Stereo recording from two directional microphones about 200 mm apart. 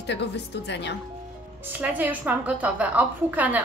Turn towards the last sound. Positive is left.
turn(degrees=-10)  # may be behind; listen again after turning